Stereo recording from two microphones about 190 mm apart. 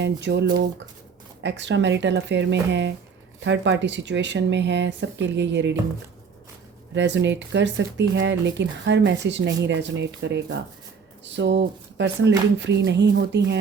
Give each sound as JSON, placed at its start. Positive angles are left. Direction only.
{"t": 0.0, "sound": "speech", "side_deg": -65}
{"t": 6.9, "sound": "speech", "side_deg": -70}